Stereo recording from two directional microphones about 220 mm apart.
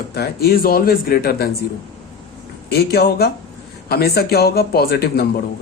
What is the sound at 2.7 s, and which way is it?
A man's voice, 45° left (ahead or behind).